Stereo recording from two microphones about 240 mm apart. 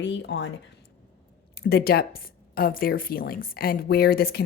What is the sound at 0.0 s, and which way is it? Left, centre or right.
Speech, left.